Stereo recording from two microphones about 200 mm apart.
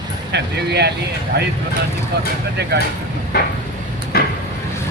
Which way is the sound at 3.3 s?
50° left (ahead or behind).